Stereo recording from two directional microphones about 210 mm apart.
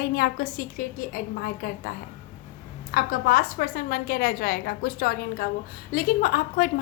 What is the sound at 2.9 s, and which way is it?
A woman's voice, 40° left (ahead or behind).